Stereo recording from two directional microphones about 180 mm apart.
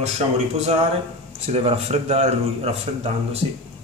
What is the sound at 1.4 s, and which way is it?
A man's voice, 35° right (ahead or behind).